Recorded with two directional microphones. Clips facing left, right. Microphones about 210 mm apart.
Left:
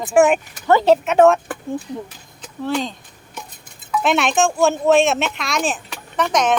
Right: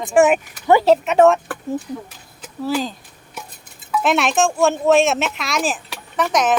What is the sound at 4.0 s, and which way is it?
Speech, centre (ahead or behind).